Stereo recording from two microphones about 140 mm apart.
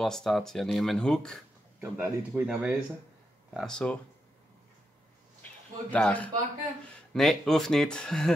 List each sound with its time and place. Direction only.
0.0 s speech: centre (ahead or behind)
1.8 s speech: 15° right (ahead or behind)
2.4 s speech: 5° right (ahead or behind)
5.9 s a man's voice: 10° left (ahead or behind)